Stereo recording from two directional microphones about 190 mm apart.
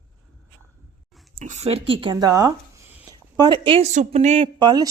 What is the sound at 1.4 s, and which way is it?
Speech, 35° right (ahead or behind).